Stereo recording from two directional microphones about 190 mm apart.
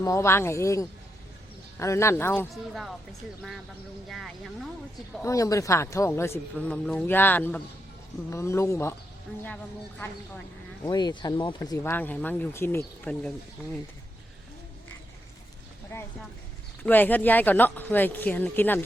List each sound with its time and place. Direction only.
0.0 s speech: 15° left (ahead or behind)
2.5 s speech: centre (ahead or behind)
4.1 s speech: centre (ahead or behind)
5.2 s speech: 15° left (ahead or behind)
10.8 s speech: 20° left (ahead or behind)
11.8 s speech: 10° left (ahead or behind)
15.9 s a sound: 10° left (ahead or behind)
16.8 s speech: 10° left (ahead or behind)